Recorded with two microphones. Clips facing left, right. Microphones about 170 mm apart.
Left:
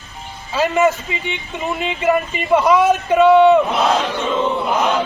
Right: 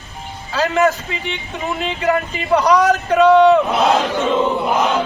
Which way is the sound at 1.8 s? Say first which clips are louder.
Left 1 dB; centre (ahead or behind).